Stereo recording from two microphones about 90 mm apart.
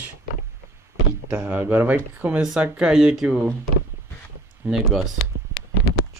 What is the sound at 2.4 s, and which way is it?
Speech, 10° right (ahead or behind).